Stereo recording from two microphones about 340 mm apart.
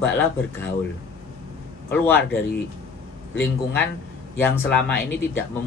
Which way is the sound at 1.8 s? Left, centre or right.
Centre.